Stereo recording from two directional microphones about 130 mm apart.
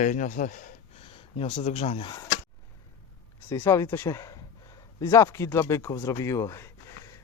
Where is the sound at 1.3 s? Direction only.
50° left (ahead or behind).